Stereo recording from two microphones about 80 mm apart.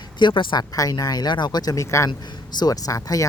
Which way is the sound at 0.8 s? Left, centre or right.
Left.